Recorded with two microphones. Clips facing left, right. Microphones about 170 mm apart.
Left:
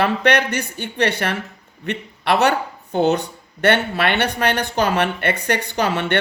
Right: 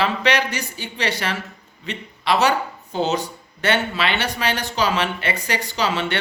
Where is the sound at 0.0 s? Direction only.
55° left (ahead or behind).